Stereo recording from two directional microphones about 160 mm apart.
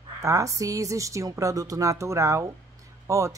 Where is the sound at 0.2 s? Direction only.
20° right (ahead or behind).